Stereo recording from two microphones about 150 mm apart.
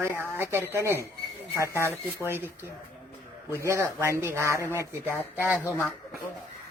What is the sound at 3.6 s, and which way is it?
Speech, 20° right (ahead or behind).